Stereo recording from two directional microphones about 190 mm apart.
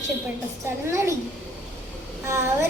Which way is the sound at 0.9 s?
15° right (ahead or behind).